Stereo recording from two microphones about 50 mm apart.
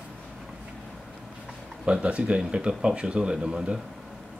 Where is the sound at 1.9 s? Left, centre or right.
Right.